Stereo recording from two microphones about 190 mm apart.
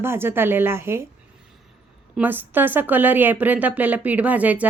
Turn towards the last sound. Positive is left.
turn(degrees=-10)  # may be behind; listen again after turning